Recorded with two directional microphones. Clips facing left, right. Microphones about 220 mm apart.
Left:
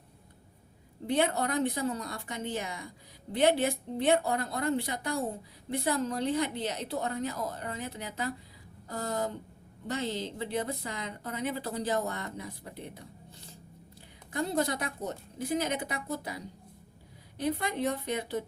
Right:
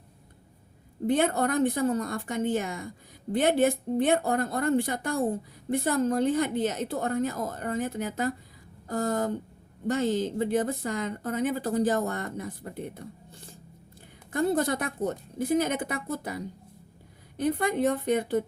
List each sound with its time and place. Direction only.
1.0 s speech: 50° right (ahead or behind)